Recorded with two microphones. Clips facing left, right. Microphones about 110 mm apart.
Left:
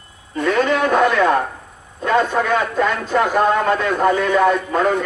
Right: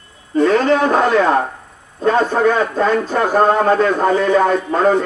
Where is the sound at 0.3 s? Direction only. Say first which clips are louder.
Right 4 dB; 35° right (ahead or behind).